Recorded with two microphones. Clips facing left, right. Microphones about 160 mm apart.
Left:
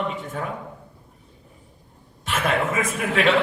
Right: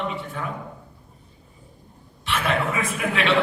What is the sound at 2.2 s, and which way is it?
A man's voice, 45° left (ahead or behind).